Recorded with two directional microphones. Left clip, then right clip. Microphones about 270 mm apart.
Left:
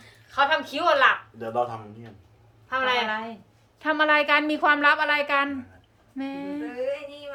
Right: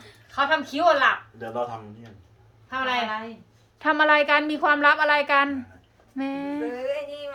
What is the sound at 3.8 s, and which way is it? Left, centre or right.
A woman's voice, centre.